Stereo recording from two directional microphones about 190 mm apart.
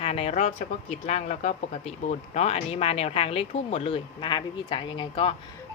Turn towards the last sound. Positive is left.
turn(degrees=30)  # may be behind; listen again after turning